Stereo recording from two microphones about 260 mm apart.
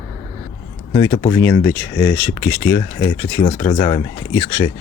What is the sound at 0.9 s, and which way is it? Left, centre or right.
Speech, centre.